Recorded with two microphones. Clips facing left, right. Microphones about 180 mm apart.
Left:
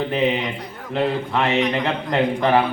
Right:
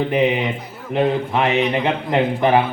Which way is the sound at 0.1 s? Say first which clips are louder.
Right 3 dB; 15° right (ahead or behind).